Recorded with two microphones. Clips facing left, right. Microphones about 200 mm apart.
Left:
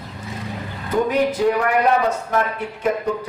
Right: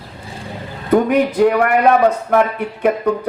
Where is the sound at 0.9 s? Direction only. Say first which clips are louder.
Right 5 dB; 60° right (ahead or behind).